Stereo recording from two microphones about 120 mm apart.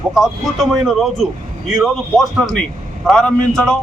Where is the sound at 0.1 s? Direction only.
Centre (ahead or behind).